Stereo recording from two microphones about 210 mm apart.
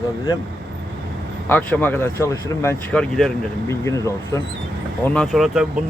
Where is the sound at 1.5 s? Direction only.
10° left (ahead or behind).